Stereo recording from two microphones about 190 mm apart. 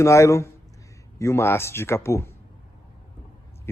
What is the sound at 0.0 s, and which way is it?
A man's voice, 15° left (ahead or behind).